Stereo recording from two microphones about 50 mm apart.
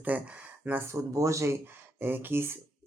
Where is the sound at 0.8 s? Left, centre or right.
Right.